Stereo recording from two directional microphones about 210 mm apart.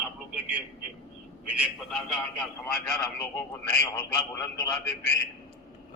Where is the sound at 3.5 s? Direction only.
5° left (ahead or behind).